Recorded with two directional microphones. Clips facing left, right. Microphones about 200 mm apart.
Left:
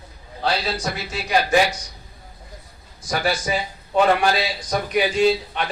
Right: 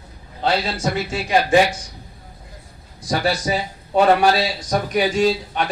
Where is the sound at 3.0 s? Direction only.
35° right (ahead or behind).